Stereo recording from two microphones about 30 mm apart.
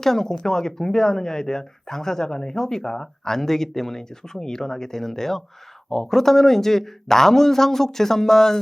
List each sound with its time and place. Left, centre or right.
0.0 s a man's voice: centre